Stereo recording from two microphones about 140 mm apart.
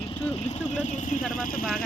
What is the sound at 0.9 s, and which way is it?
Speech, 60° left (ahead or behind).